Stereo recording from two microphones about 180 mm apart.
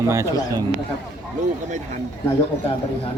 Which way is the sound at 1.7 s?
45° right (ahead or behind).